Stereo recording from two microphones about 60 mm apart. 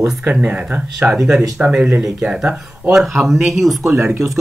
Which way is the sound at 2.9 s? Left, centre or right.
Centre.